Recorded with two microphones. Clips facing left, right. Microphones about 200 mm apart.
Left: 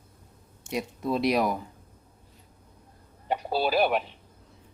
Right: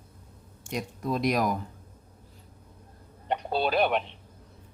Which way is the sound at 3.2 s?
5° left (ahead or behind).